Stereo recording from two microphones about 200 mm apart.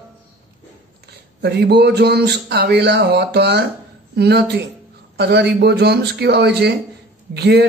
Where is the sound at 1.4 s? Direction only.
55° right (ahead or behind).